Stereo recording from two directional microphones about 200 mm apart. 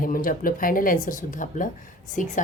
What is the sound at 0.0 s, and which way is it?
A woman's voice, 45° left (ahead or behind).